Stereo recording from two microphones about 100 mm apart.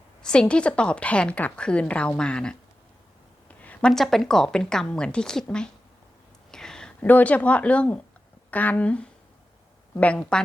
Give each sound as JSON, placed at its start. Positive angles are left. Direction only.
{"t": 0.2, "sound": "a woman's voice", "side_deg": 10}
{"t": 6.5, "sound": "a sound", "side_deg": 5}
{"t": 7.0, "sound": "a woman's voice", "side_deg": 15}